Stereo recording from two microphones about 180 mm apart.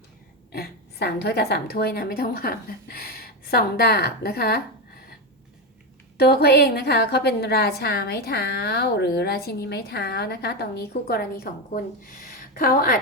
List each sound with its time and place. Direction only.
0.5 s a woman's voice: 60° left (ahead or behind)
6.1 s a woman's voice: 60° left (ahead or behind)